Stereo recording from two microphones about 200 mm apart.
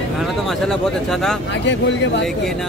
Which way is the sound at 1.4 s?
60° left (ahead or behind).